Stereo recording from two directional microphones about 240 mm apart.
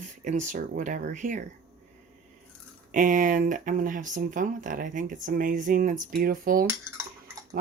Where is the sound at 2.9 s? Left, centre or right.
Right.